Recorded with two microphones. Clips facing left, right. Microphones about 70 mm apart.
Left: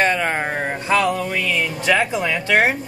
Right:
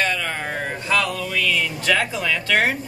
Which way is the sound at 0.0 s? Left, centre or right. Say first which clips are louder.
Left 5 dB; left.